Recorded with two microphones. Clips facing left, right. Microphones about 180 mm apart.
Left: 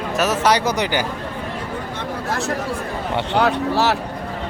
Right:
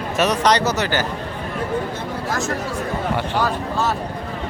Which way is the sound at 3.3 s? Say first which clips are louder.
Left 4 dB; 70° left (ahead or behind).